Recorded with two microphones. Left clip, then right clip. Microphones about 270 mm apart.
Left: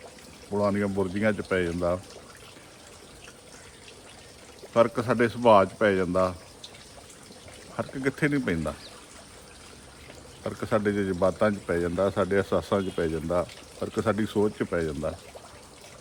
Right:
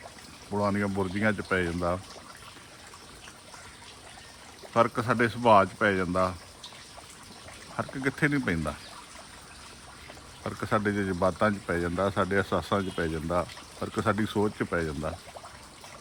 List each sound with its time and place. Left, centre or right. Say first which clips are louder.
0.5 s speech: left 2 dB; centre
4.7 s speech: left 2 dB; centre
7.8 s speech: left 1 dB; centre
10.4 s speech: left 2 dB; centre